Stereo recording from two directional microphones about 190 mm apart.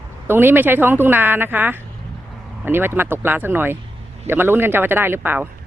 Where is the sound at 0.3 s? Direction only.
10° right (ahead or behind).